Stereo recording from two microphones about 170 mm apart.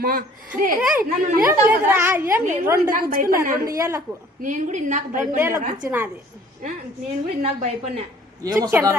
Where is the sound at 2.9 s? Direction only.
55° right (ahead or behind).